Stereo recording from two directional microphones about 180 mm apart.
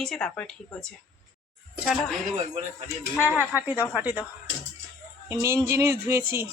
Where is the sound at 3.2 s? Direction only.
15° left (ahead or behind).